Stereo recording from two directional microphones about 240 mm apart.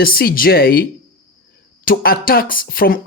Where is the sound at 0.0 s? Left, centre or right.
Left.